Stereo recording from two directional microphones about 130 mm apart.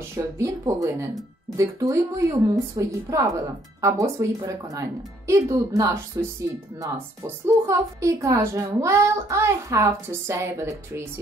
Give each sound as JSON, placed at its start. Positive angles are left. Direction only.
{"t": 0.1, "sound": "a woman's voice", "side_deg": -20}